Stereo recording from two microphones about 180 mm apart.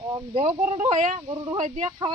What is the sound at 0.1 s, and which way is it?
Speech, 30° right (ahead or behind).